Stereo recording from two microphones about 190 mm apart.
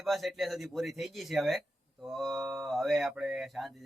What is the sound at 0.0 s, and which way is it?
Speech, centre (ahead or behind).